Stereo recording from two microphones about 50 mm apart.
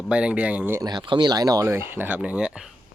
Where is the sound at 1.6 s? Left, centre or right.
Right.